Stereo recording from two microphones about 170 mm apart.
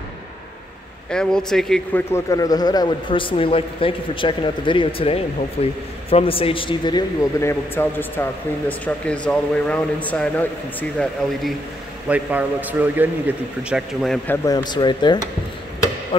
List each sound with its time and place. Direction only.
1.1 s speech: 5° left (ahead or behind)
2.1 s a man's voice: 20° left (ahead or behind)
12.1 s a man's voice: 10° right (ahead or behind); by 15.1 s 25° left (ahead or behind)